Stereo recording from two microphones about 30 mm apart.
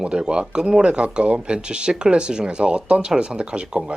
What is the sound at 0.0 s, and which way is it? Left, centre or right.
Speech, right.